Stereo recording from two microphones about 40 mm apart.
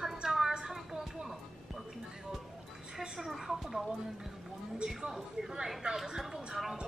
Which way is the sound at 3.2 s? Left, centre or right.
Centre.